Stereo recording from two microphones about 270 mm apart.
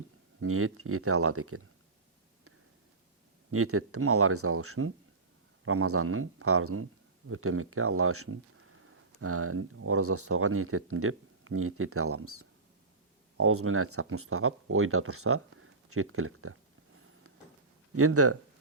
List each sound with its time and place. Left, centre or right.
0.3 s speech: right
3.5 s speech: right
17.9 s speech: right